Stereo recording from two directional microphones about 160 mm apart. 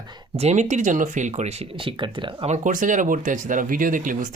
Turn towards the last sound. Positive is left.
turn(degrees=-55)  # may be behind; listen again after turning